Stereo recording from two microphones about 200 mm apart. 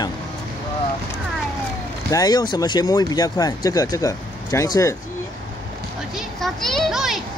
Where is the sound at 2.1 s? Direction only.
20° left (ahead or behind).